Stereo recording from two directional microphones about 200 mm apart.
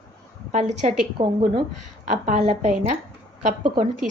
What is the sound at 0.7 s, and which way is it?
A woman's voice, 35° right (ahead or behind).